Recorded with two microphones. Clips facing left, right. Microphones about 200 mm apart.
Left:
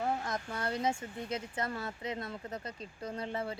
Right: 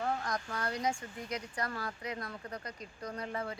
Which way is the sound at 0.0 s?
25° left (ahead or behind).